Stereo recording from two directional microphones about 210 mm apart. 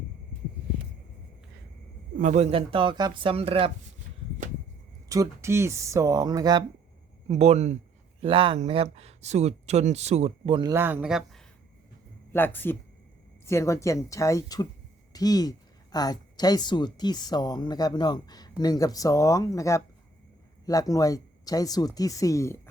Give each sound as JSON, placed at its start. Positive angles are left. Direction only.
{"t": 2.1, "sound": "speech", "side_deg": -35}
{"t": 5.0, "sound": "speech", "side_deg": -15}
{"t": 7.3, "sound": "speech", "side_deg": -30}
{"t": 12.3, "sound": "a woman's voice", "side_deg": 10}